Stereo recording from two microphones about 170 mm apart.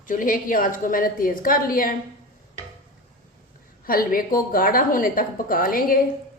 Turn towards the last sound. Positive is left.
turn(degrees=55)  # may be behind; listen again after turning